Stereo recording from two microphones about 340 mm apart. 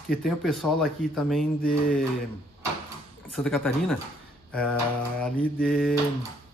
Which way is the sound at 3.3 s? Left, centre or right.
Centre.